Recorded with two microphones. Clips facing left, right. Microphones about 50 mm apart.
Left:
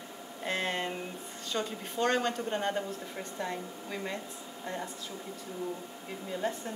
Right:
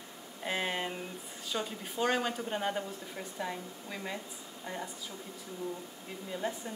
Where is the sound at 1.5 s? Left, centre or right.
Centre.